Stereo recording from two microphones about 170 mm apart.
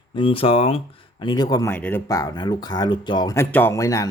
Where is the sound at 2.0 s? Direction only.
20° left (ahead or behind).